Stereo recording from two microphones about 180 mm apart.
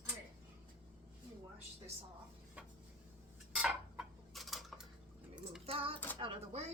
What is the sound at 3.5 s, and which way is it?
Fowl, 5° right (ahead or behind).